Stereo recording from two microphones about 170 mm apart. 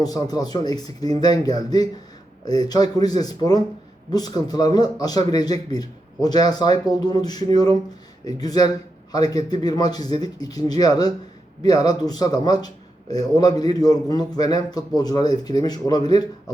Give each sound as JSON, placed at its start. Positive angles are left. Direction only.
{"t": 0.0, "sound": "a man's voice", "side_deg": 20}